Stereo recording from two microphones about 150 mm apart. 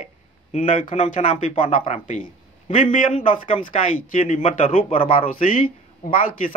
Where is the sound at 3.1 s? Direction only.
35° left (ahead or behind).